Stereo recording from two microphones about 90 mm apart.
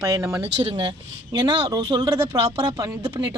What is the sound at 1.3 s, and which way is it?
Speech, 45° right (ahead or behind).